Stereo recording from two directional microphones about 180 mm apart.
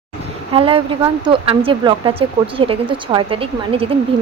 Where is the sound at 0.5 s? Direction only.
30° right (ahead or behind).